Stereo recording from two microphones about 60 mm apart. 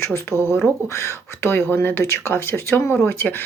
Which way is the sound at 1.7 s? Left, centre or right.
Left.